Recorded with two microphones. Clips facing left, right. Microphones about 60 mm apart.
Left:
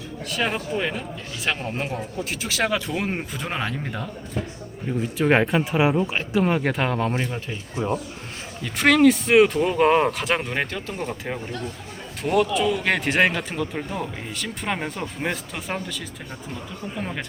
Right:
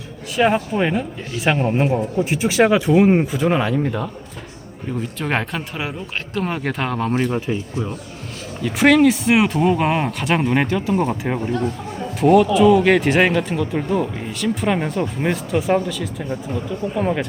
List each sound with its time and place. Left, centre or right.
0.3 s speech: centre
8.6 s speech: centre
12.2 s speech: centre